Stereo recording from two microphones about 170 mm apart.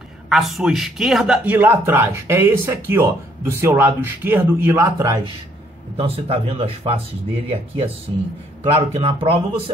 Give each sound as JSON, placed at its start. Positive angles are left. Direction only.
{"t": 0.3, "sound": "a man's voice", "side_deg": 0}
{"t": 5.9, "sound": "speech", "side_deg": -35}
{"t": 8.9, "sound": "speech", "side_deg": -30}